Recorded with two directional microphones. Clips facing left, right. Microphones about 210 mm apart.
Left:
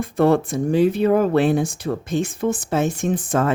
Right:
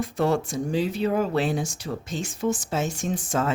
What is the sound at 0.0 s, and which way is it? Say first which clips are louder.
Speech: left 6 dB; 55° left (ahead or behind).